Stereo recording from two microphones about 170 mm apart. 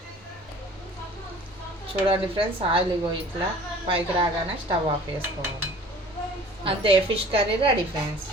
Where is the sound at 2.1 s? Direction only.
30° right (ahead or behind).